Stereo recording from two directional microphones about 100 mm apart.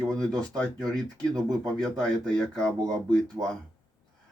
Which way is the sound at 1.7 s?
5° left (ahead or behind).